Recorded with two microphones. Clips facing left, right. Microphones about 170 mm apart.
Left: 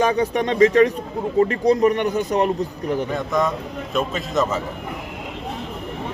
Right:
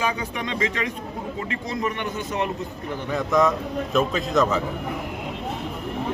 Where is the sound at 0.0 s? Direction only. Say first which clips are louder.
Left 8 dB; 35° left (ahead or behind).